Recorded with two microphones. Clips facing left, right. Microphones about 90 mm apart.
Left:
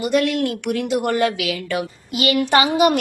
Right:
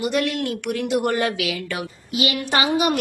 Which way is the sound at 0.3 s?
45° left (ahead or behind).